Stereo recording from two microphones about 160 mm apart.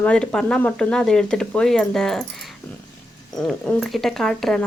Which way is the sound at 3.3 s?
5° left (ahead or behind).